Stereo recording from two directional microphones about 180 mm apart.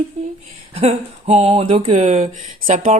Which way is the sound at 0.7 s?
35° right (ahead or behind).